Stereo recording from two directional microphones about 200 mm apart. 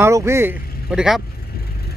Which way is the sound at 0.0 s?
15° right (ahead or behind).